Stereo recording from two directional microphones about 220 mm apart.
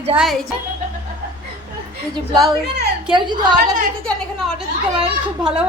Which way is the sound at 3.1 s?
20° right (ahead or behind).